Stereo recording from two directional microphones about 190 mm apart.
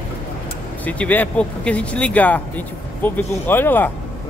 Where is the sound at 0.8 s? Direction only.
10° left (ahead or behind).